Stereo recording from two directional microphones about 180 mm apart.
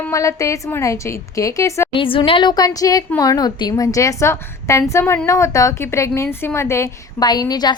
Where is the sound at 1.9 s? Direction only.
30° left (ahead or behind).